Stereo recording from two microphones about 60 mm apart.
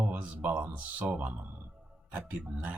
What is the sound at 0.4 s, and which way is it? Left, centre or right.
Speech, right.